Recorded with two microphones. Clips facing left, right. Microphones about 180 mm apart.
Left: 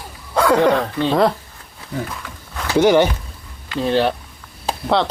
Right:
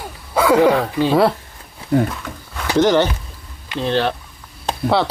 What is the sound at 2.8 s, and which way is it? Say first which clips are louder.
Speech: left 1 dB; 10° left (ahead or behind).